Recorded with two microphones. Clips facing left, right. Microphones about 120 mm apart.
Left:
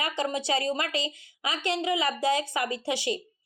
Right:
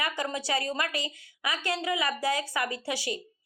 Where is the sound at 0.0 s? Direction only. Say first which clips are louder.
Left 2 dB; 25° left (ahead or behind).